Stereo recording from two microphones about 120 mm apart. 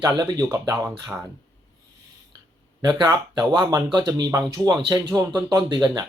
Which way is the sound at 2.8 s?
35° right (ahead or behind).